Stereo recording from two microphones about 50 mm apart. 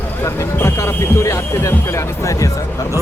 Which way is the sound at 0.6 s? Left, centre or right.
Left.